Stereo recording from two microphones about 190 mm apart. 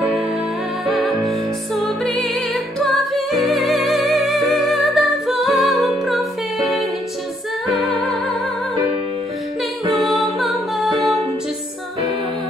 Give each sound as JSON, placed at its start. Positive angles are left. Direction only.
{"t": 0.8, "sound": "music", "side_deg": 0}
{"t": 10.4, "sound": "music", "side_deg": 0}